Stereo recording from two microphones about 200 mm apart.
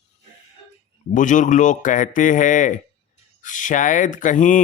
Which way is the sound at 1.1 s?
40° left (ahead or behind).